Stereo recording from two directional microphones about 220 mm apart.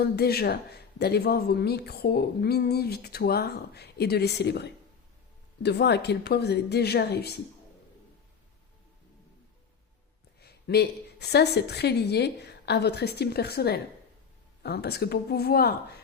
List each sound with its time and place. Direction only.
0.0 s a woman's voice: 45° left (ahead or behind)
10.4 s a woman's voice: 45° left (ahead or behind)